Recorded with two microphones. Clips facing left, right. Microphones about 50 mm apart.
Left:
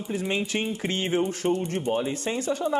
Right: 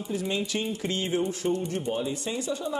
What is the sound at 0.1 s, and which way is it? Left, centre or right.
A man's voice, left.